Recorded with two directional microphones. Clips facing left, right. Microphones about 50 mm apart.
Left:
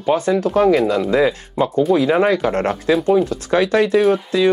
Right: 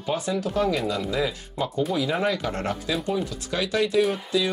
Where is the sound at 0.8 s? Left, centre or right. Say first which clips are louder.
Left 10 dB; left.